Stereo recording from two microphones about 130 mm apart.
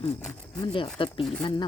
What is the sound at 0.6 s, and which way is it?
Speech, 40° left (ahead or behind).